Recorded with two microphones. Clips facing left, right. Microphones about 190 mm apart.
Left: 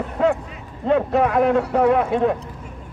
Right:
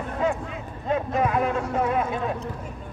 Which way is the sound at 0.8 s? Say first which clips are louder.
Left 6 dB; 70° left (ahead or behind).